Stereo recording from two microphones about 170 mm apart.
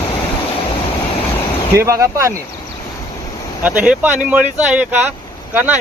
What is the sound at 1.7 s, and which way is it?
Speech, 15° right (ahead or behind).